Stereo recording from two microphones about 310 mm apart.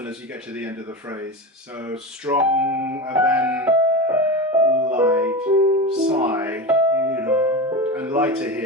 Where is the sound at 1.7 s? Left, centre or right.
Centre.